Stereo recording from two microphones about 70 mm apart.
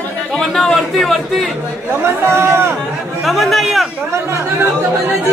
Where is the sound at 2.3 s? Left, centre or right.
Right.